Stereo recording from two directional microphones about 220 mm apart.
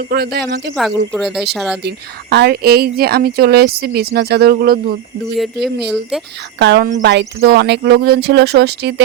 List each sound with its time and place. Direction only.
0.0 s speech: 45° right (ahead or behind)
0.8 s speech: centre (ahead or behind)
2.3 s speech: 45° right (ahead or behind)
5.9 s speech: centre (ahead or behind)
6.6 s speech: 50° right (ahead or behind)